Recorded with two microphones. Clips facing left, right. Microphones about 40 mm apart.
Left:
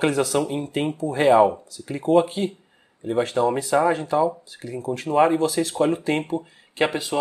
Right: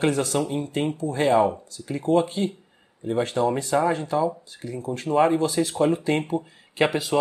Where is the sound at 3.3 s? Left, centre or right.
Centre.